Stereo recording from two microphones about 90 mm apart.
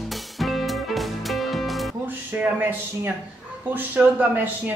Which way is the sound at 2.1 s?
20° right (ahead or behind).